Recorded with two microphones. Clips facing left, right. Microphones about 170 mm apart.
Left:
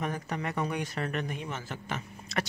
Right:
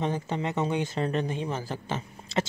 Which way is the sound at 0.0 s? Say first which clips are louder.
Right 4 dB; 25° right (ahead or behind).